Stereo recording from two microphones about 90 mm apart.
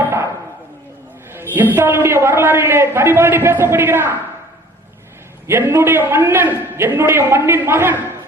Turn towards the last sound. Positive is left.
turn(degrees=-25)  # may be behind; listen again after turning